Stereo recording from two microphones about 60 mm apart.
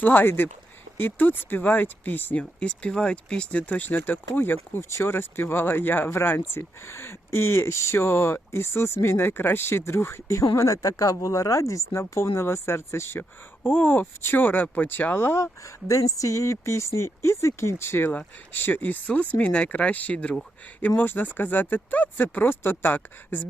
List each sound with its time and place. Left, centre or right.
0.0 s speech: left
2.4 s speech: centre; by 4.8 s left
4.8 s speech: left
5.0 s speech: left
10.5 s speech: left
13.1 s speech: left
15.4 s speech: left
18.5 s speech: left